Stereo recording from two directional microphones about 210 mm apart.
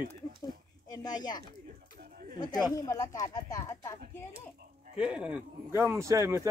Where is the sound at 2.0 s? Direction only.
40° right (ahead or behind).